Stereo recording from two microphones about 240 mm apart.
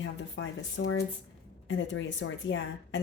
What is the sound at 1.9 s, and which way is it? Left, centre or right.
A woman's voice, left.